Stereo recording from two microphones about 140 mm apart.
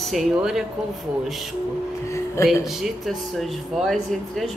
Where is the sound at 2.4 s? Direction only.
Centre (ahead or behind).